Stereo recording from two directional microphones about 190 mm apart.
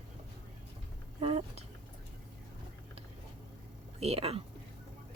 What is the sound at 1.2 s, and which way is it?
Speech, 30° right (ahead or behind).